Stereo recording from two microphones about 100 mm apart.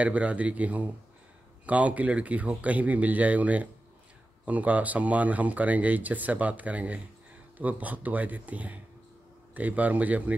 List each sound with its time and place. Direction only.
0.0 s speech: 15° right (ahead or behind)